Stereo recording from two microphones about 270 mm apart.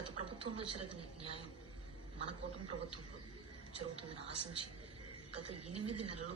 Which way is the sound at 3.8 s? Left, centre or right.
Right.